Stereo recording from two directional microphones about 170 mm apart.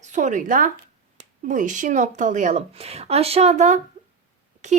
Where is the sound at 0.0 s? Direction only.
45° right (ahead or behind).